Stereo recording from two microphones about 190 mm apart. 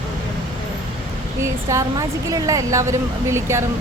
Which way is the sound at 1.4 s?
15° right (ahead or behind).